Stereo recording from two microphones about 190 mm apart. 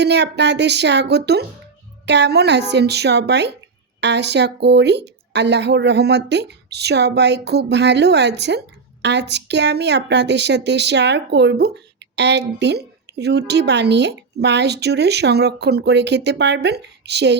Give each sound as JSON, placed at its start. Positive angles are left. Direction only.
{"t": 0.0, "sound": "speech", "side_deg": -65}